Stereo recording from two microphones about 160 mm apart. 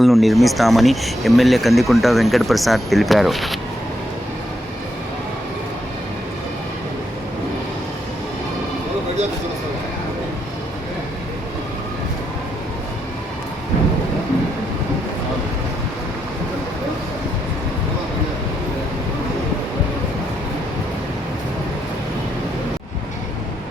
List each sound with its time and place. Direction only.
0.0 s speech: centre (ahead or behind)